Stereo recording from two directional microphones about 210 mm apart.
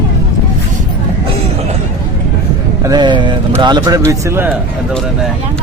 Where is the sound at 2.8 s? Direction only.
20° right (ahead or behind).